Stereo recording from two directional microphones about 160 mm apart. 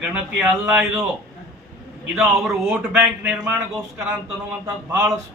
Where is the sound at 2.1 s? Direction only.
5° right (ahead or behind).